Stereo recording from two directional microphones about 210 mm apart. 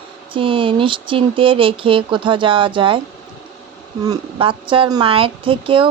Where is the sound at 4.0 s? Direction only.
20° right (ahead or behind).